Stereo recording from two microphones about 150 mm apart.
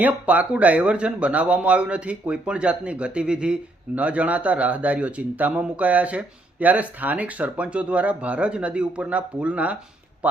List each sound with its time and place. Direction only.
0.0 s speech: 10° right (ahead or behind)